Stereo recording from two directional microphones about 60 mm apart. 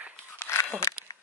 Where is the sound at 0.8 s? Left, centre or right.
Left.